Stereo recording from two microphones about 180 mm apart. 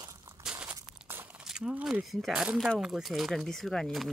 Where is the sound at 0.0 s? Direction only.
15° right (ahead or behind).